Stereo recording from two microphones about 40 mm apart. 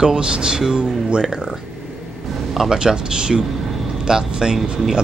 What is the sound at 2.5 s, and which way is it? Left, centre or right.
A man's voice, centre.